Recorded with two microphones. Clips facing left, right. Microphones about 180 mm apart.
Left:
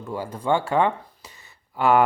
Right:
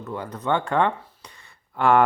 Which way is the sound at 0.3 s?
10° left (ahead or behind).